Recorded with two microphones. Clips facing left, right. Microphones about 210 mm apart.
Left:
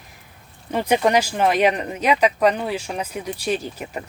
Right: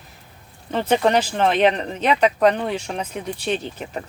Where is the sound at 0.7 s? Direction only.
10° left (ahead or behind).